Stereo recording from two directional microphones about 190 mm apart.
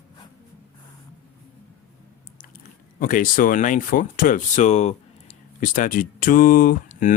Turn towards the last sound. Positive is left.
turn(degrees=45)  # may be behind; listen again after turning